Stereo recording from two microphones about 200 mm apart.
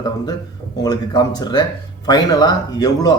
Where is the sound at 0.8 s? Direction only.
20° left (ahead or behind).